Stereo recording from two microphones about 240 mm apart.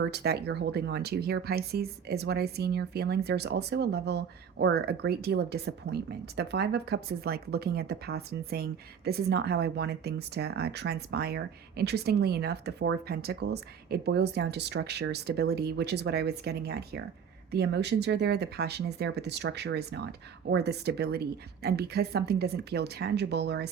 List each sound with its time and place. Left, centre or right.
0.0 s speech: right